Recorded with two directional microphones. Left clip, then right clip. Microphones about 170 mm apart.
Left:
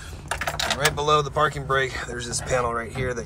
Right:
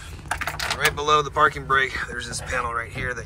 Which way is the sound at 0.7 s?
30° left (ahead or behind).